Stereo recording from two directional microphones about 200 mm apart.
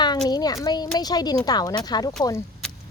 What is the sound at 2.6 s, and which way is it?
Vehicle, 5° left (ahead or behind).